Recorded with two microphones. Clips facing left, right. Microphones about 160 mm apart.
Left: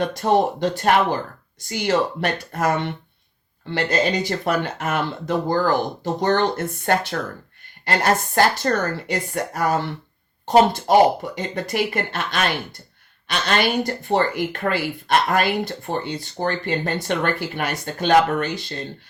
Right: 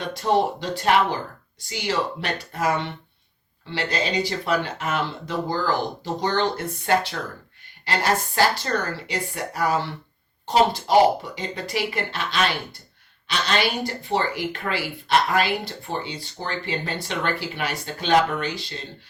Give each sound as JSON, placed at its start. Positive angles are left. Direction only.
{"t": 0.2, "sound": "speech", "side_deg": 50}